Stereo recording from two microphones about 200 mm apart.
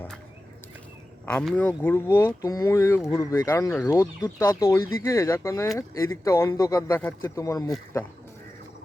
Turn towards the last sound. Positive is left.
turn(degrees=15)  # may be behind; listen again after turning